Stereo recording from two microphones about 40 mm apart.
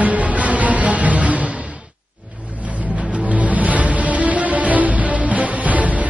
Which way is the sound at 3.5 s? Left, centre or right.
Right.